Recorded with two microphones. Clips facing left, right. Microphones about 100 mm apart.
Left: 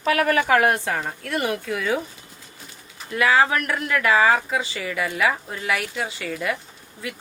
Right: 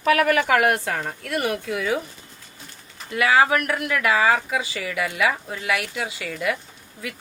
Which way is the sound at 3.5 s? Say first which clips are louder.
Right 1 dB; 35° left (ahead or behind).